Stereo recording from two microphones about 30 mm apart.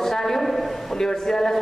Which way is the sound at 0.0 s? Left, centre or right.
Centre.